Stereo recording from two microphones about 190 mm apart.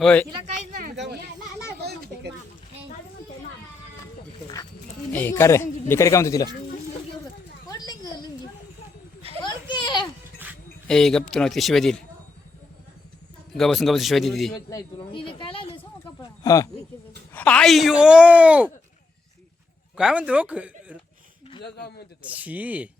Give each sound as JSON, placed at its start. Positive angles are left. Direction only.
{"t": 0.0, "sound": "a man's voice", "side_deg": 5}
{"t": 0.8, "sound": "a sound", "side_deg": -55}
{"t": 5.1, "sound": "a man's voice", "side_deg": 10}
{"t": 7.7, "sound": "a sound", "side_deg": 20}
{"t": 9.4, "sound": "children playing", "side_deg": 25}
{"t": 10.8, "sound": "speech", "side_deg": 0}
{"t": 13.5, "sound": "speech", "side_deg": 0}
{"t": 14.5, "sound": "speech", "side_deg": 20}
{"t": 16.2, "sound": "a sound", "side_deg": 20}
{"t": 17.3, "sound": "speech", "side_deg": 5}
{"t": 20.0, "sound": "speech", "side_deg": -5}
{"t": 21.6, "sound": "a man's voice", "side_deg": 60}
{"t": 22.2, "sound": "speech", "side_deg": -10}